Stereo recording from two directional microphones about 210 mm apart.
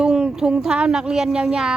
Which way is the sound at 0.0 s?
5° right (ahead or behind).